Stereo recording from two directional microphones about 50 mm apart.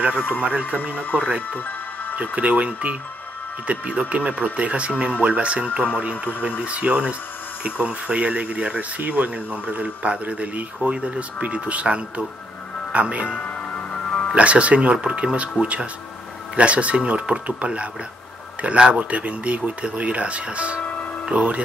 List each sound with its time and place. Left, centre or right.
0.3 s speech: right
1.5 s music: left
2.1 s speech: right
13.6 s music: left
14.3 s speech: right